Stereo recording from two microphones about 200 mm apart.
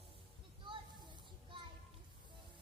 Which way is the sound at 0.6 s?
25° right (ahead or behind).